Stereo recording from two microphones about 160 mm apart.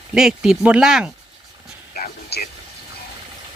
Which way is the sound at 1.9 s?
70° left (ahead or behind).